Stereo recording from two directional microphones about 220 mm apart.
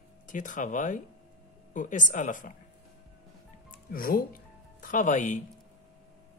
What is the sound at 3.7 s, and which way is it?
Music, 40° left (ahead or behind).